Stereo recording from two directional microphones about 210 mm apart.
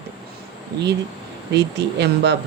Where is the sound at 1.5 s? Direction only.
50° right (ahead or behind).